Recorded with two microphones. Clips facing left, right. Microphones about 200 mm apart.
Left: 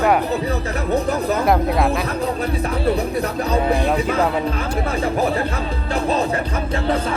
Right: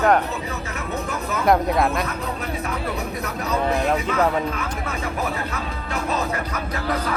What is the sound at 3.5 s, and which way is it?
Speech, 30° left (ahead or behind).